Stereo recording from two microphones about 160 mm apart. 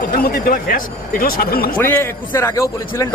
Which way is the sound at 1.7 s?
15° left (ahead or behind).